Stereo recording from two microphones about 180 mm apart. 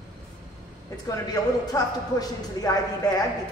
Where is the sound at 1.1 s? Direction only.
20° left (ahead or behind).